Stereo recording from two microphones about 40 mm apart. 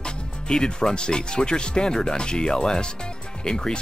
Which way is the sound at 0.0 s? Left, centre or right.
Centre.